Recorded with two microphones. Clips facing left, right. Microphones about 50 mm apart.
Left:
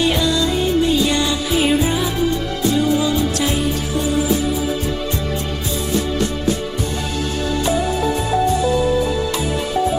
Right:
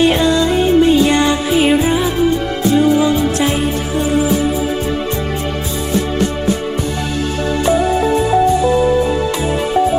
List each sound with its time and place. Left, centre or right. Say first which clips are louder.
0.0 s music: right 5 dB; right
7.6 s music: right 6 dB; right